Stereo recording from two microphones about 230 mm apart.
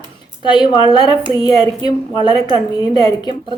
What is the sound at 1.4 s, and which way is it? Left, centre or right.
Speech, centre.